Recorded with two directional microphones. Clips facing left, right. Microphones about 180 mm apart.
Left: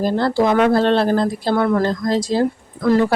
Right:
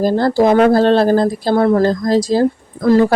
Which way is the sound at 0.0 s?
40° right (ahead or behind).